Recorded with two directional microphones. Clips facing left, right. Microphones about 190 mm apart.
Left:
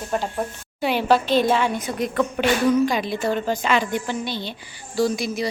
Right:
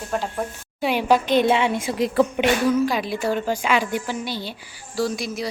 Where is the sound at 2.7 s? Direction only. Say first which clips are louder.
Left 1 dB; 5° right (ahead or behind).